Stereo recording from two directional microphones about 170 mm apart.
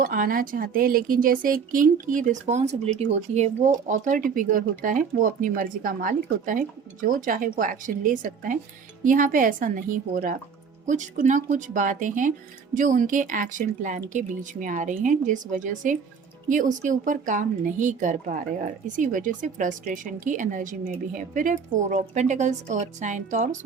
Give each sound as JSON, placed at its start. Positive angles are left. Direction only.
{"t": 0.0, "sound": "speech", "side_deg": -55}